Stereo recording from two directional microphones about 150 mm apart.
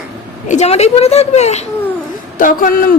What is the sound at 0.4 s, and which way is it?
A woman's voice, 50° left (ahead or behind).